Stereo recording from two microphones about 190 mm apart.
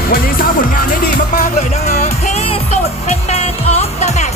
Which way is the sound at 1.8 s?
40° left (ahead or behind).